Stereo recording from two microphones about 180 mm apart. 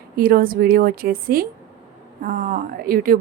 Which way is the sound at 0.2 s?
55° right (ahead or behind).